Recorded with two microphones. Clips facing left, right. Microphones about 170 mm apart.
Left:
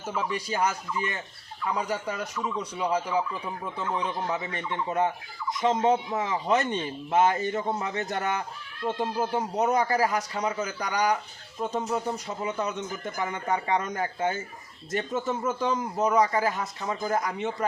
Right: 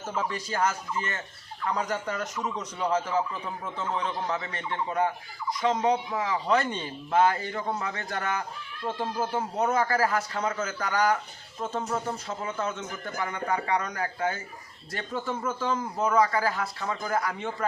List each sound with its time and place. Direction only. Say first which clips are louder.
0.1 s a man's voice: left 1 dB; 10° left (ahead or behind)